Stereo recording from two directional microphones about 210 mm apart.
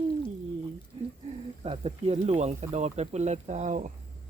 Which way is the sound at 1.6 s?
30° right (ahead or behind).